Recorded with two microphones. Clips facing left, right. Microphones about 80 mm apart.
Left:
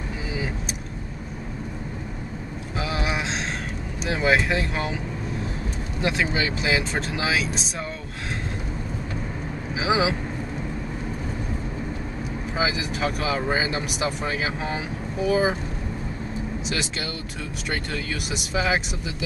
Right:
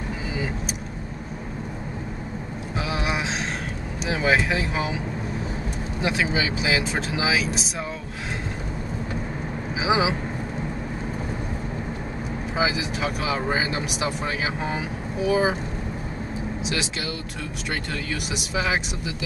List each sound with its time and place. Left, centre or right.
2.8 s a sound: centre
4.0 s speech: centre
9.8 s speech: centre
12.5 s speech: centre
18.3 s speech: centre